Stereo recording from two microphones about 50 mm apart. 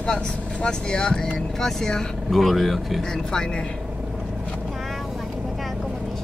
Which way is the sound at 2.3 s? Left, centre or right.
Centre.